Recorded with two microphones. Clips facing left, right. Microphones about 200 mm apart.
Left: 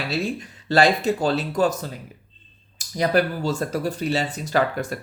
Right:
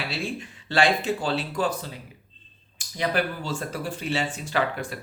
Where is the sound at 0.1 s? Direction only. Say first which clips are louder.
Left 5 dB; 40° left (ahead or behind).